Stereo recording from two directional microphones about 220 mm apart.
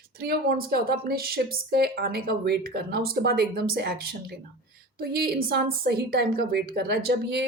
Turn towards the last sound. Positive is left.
turn(degrees=-50)  # may be behind; listen again after turning